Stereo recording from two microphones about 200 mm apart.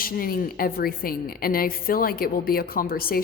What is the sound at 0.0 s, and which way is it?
A woman's voice, 45° left (ahead or behind).